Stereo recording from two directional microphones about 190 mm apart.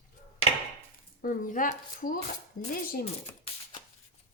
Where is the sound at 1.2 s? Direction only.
45° left (ahead or behind).